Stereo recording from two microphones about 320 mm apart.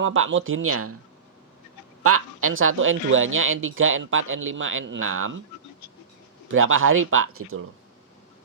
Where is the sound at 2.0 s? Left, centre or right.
Right.